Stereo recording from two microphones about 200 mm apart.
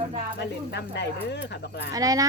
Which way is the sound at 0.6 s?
60° left (ahead or behind).